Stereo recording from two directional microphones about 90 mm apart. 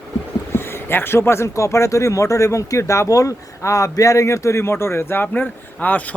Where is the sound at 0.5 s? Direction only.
25° left (ahead or behind).